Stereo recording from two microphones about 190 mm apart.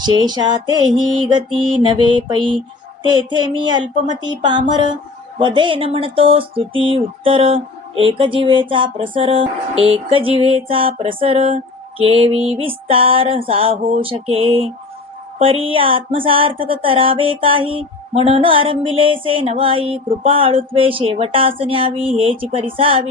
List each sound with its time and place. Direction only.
0.0 s speech: 20° right (ahead or behind)